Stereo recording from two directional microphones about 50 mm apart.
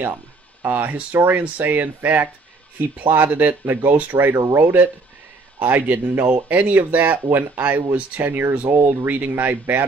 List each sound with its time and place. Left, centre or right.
0.7 s speech: right
3.6 s speech: right
3.9 s speech: right
7.6 s speech: right
8.2 s speech: right